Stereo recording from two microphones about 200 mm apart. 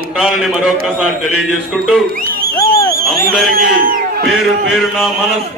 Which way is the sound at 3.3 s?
45° right (ahead or behind).